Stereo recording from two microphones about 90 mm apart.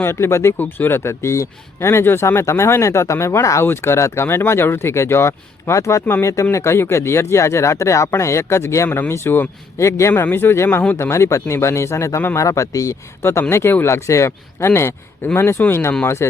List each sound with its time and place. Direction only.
0.0 s speech: 30° left (ahead or behind)